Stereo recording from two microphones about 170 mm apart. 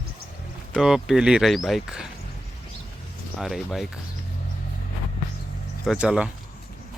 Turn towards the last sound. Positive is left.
turn(degrees=-5)  # may be behind; listen again after turning